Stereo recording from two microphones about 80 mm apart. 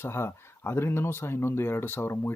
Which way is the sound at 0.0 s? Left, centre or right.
Left.